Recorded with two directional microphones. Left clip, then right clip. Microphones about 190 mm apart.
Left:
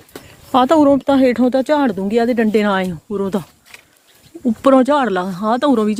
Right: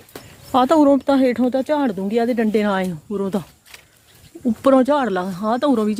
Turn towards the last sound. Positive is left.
turn(degrees=15)  # may be behind; listen again after turning